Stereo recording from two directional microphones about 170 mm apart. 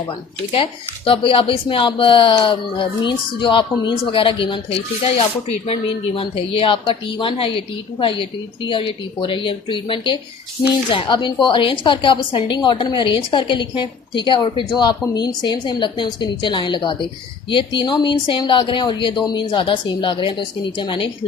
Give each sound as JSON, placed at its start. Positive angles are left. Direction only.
{"t": 0.5, "sound": "a woman's voice", "side_deg": 30}